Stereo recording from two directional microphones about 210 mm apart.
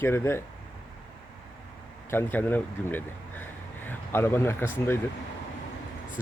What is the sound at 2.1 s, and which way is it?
Speech, 10° left (ahead or behind).